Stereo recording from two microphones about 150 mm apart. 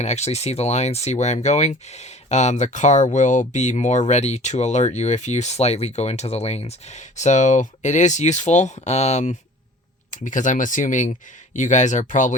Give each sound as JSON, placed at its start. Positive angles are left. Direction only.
{"t": 0.0, "sound": "speech", "side_deg": 45}